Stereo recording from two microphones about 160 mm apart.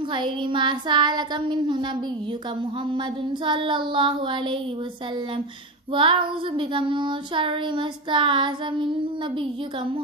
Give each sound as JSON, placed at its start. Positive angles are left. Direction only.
{"t": 0.1, "sound": "child singing", "side_deg": -30}
{"t": 2.9, "sound": "child singing", "side_deg": -30}
{"t": 5.9, "sound": "child singing", "side_deg": -30}